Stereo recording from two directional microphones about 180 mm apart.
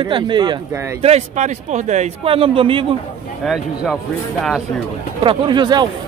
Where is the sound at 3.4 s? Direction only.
5° right (ahead or behind).